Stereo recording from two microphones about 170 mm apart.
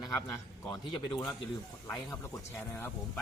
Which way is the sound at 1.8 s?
5° left (ahead or behind).